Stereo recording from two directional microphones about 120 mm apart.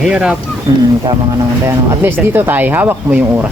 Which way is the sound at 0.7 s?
45° right (ahead or behind).